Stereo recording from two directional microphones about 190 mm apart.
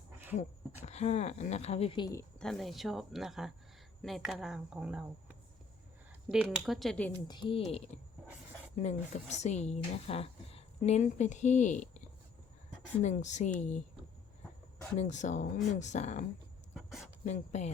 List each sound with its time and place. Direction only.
0.3 s a woman's voice: 35° left (ahead or behind)
2.4 s speech: centre (ahead or behind)
6.3 s speech: centre (ahead or behind)
7.3 s speech: 25° left (ahead or behind)
8.8 s a woman's voice: 35° left (ahead or behind)
14.9 s a woman's voice: 40° left (ahead or behind)
16.7 s a sound: centre (ahead or behind)
17.2 s a woman's voice: 35° left (ahead or behind)